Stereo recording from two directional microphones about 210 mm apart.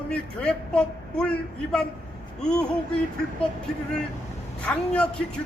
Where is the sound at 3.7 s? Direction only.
5° left (ahead or behind).